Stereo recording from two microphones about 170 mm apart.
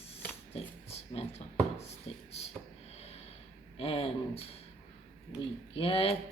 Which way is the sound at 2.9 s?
40° left (ahead or behind).